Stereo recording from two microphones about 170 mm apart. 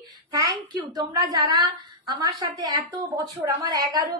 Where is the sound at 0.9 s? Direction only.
20° right (ahead or behind).